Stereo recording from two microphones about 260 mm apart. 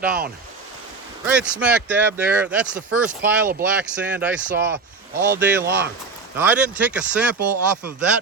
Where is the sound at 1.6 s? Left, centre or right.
Centre.